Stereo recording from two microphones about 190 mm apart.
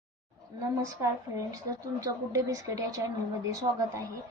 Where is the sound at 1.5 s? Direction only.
15° right (ahead or behind).